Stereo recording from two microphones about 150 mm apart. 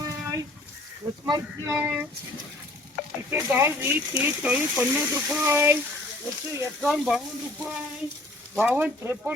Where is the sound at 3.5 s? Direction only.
15° right (ahead or behind).